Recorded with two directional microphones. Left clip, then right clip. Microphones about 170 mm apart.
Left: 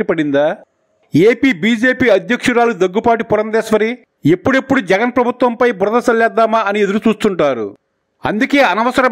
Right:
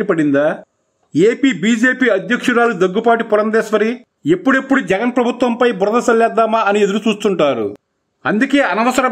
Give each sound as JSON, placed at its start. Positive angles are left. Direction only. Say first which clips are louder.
{"t": 0.0, "sound": "a man's voice", "louder": "even", "side_deg": 35}